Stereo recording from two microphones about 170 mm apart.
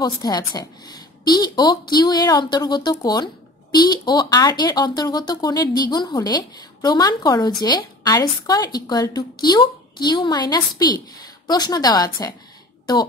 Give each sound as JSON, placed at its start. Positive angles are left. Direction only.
{"t": 0.0, "sound": "speech", "side_deg": 25}